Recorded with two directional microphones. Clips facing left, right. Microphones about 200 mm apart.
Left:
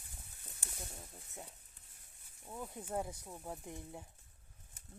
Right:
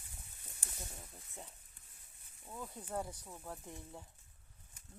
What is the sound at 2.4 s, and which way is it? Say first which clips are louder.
Speech: left 2 dB; 15° left (ahead or behind).